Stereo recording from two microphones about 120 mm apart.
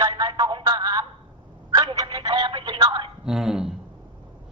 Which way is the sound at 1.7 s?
35° right (ahead or behind).